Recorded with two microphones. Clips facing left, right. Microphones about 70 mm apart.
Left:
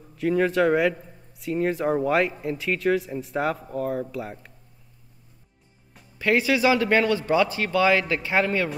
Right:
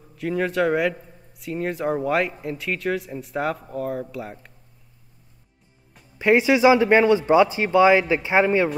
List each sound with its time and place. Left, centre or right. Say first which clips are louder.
0.1 s speech: left 2 dB; centre
6.1 s a man's voice: right 4 dB; right